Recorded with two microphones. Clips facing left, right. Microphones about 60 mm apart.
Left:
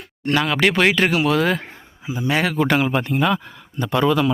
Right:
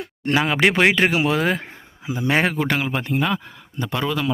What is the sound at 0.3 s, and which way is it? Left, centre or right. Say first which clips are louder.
Speech: even; centre.